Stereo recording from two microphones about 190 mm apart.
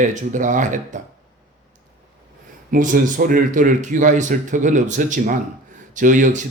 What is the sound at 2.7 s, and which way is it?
Speech, 45° right (ahead or behind).